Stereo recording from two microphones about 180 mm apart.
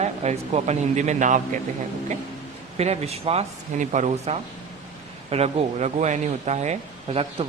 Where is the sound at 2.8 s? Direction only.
35° right (ahead or behind).